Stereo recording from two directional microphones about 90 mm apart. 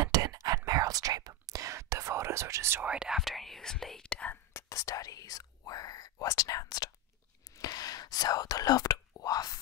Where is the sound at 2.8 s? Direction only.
10° right (ahead or behind); by 4.3 s 15° left (ahead or behind).